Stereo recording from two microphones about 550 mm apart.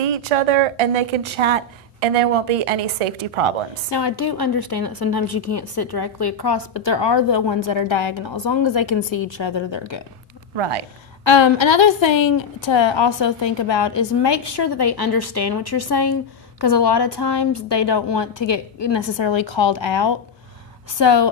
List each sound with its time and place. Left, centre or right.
0.0 s a woman's voice: right
3.9 s a woman's voice: left
10.5 s speech: right
11.2 s a woman's voice: left